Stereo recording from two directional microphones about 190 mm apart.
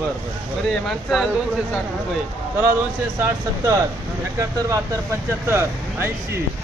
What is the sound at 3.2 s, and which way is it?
Speech, 15° right (ahead or behind).